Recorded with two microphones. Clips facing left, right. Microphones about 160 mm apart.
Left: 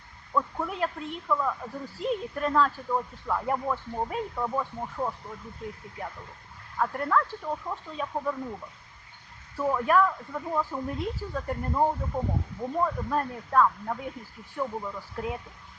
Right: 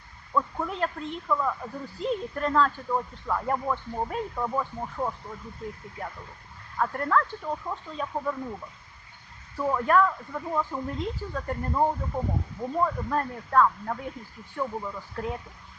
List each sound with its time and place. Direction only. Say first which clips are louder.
0.3 s speech: right 1 dB; 5° left (ahead or behind)
6.7 s speech: right 1 dB; 5° left (ahead or behind)
9.6 s speech: right 1 dB; 5° left (ahead or behind)